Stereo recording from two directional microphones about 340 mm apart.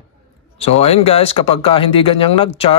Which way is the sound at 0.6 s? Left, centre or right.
Centre.